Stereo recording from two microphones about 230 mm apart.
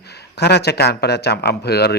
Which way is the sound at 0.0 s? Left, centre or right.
Left.